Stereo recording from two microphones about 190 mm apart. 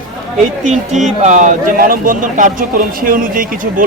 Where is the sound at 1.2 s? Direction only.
40° right (ahead or behind).